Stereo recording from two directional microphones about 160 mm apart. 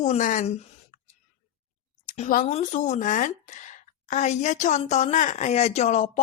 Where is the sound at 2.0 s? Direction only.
50° left (ahead or behind).